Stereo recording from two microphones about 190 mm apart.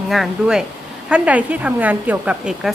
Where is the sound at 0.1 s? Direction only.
Centre (ahead or behind).